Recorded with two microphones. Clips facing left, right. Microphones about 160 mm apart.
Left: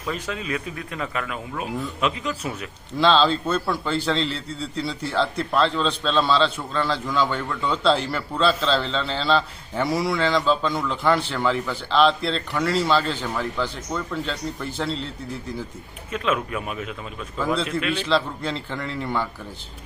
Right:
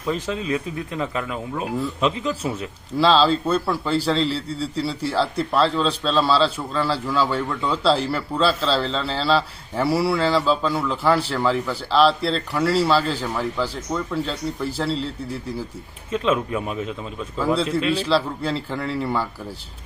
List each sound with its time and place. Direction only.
0.1 s a man's voice: 30° right (ahead or behind)
3.0 s a man's voice: 5° right (ahead or behind)
16.1 s a man's voice: 30° right (ahead or behind)
18.1 s a man's voice: 5° right (ahead or behind)